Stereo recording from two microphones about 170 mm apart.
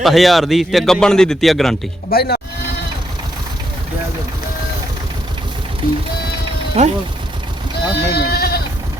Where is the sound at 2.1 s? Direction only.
65° left (ahead or behind).